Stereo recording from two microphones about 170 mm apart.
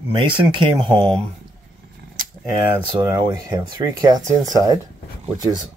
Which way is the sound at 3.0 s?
25° right (ahead or behind).